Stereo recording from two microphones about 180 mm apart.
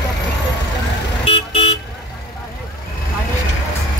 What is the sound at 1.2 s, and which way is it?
Vehicle, 40° left (ahead or behind).